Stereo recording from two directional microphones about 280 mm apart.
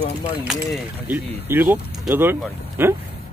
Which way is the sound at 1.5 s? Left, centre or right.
Centre.